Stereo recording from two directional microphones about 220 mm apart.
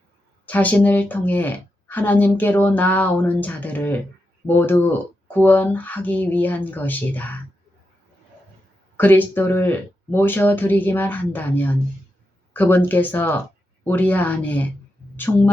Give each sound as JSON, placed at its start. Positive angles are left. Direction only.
{"t": 0.4, "sound": "a woman's voice", "side_deg": 5}
{"t": 9.0, "sound": "a woman's voice", "side_deg": 10}